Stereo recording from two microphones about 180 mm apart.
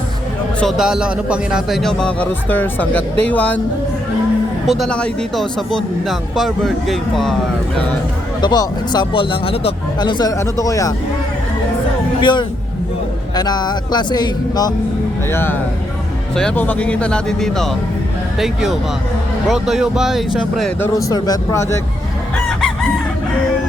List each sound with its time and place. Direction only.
0.6 s speech: 5° right (ahead or behind)
4.6 s speech: centre (ahead or behind)
8.4 s speech: 25° left (ahead or behind)
12.2 s speech: 25° left (ahead or behind)
15.3 s speech: 10° left (ahead or behind)
20.8 s speech: 20° left (ahead or behind)
22.4 s chicken: centre (ahead or behind)